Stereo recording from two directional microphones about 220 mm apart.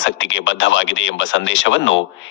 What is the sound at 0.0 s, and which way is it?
Speech, 60° left (ahead or behind).